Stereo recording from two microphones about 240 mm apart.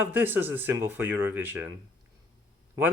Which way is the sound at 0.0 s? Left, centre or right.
Centre.